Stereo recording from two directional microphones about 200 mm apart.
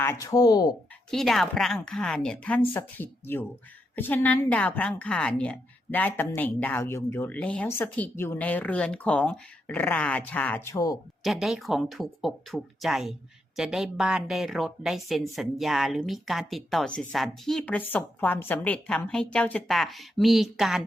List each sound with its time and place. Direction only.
0.0 s a woman's voice: 15° left (ahead or behind)
1.1 s a woman's voice: centre (ahead or behind)
11.2 s speech: centre (ahead or behind)